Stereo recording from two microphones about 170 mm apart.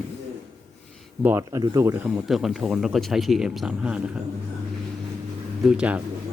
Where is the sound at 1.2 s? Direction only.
15° right (ahead or behind).